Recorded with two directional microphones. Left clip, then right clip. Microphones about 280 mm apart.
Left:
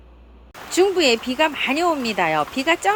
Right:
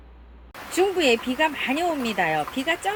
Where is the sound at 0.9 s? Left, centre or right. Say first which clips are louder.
Left 3 dB; centre.